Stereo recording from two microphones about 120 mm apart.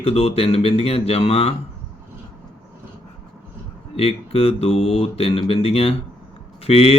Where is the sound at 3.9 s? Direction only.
55° left (ahead or behind).